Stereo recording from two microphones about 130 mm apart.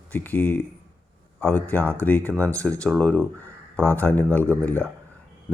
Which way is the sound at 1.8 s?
15° right (ahead or behind).